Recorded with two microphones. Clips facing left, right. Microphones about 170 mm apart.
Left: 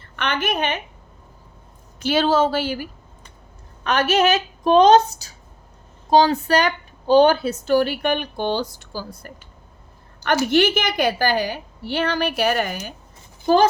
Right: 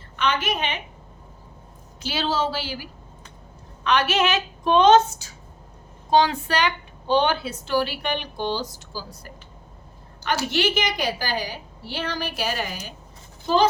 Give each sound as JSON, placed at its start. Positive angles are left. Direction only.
{"t": 0.2, "sound": "a woman's voice", "side_deg": 55}
{"t": 2.0, "sound": "a woman's voice", "side_deg": 55}
{"t": 3.8, "sound": "a woman's voice", "side_deg": 40}